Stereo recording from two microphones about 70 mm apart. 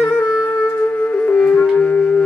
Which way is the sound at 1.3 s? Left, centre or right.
Left.